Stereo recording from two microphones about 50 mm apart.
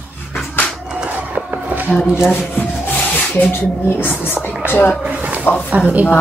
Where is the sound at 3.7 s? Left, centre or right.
Left.